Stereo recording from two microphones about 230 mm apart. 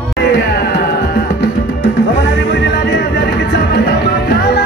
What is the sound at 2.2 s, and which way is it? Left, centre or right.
Music, left.